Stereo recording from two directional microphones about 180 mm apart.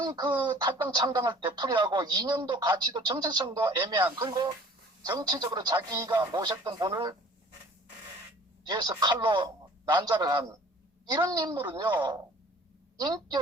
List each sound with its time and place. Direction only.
0.0 s speech: 25° right (ahead or behind)
8.6 s speech: 20° right (ahead or behind)
13.0 s speech: 20° right (ahead or behind)